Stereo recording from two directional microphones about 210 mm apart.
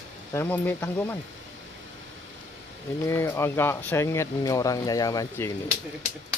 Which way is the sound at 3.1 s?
10° left (ahead or behind).